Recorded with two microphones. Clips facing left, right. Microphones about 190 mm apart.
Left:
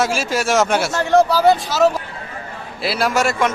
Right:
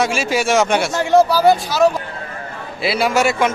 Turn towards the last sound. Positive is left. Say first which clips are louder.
# right 2 dB
turn(degrees=0)  # may be behind; listen again after turning